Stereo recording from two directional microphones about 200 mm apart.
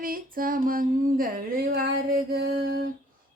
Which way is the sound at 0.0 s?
45° right (ahead or behind).